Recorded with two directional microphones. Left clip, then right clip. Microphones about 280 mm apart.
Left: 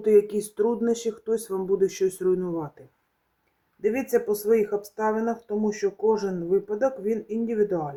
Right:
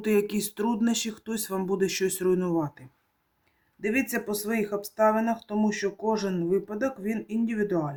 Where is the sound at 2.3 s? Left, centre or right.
Right.